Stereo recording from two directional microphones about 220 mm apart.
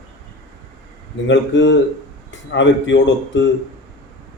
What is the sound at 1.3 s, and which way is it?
A man's voice, 55° left (ahead or behind).